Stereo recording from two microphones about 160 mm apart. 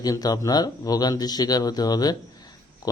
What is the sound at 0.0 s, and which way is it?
Speech, 25° left (ahead or behind).